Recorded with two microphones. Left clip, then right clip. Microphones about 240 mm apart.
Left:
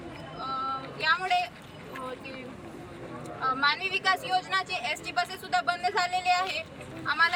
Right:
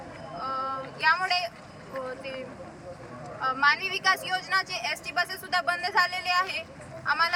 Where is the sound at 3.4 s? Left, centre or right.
Centre.